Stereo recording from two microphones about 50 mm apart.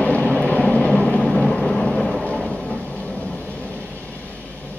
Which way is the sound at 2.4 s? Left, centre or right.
Centre.